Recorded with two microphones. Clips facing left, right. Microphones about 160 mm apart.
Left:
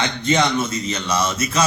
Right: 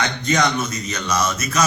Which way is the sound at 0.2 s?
30° left (ahead or behind).